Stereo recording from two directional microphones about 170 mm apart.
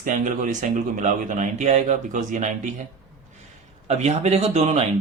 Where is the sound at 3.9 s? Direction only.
40° right (ahead or behind).